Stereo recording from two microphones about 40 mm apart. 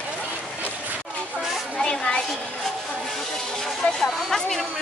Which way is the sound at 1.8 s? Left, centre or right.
Left.